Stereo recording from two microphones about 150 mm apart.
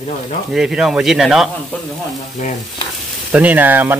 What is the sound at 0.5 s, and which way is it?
Speech, 5° right (ahead or behind).